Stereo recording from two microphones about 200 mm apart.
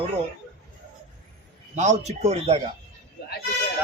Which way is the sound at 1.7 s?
35° right (ahead or behind).